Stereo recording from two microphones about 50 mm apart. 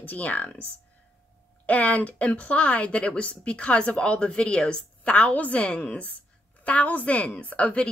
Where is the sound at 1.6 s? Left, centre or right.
Left.